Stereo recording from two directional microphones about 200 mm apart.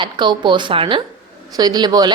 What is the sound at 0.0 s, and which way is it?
A woman's voice, 25° right (ahead or behind).